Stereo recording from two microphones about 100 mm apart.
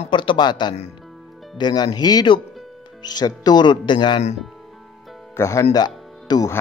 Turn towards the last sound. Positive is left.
turn(degrees=40)  # may be behind; listen again after turning